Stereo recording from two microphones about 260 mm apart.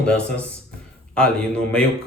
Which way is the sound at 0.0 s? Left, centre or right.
Centre.